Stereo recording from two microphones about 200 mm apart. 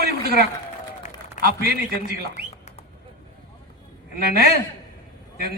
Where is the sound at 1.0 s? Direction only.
35° left (ahead or behind).